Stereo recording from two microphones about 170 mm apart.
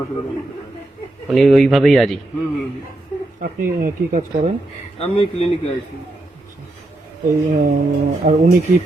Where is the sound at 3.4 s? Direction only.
60° right (ahead or behind).